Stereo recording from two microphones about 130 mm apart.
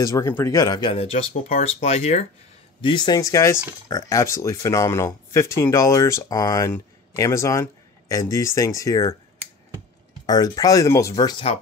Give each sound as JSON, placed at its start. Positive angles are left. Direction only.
{"t": 0.0, "sound": "speech", "side_deg": 25}
{"t": 1.6, "sound": "speech", "side_deg": 55}
{"t": 2.8, "sound": "speech", "side_deg": 35}
{"t": 10.2, "sound": "speech", "side_deg": 30}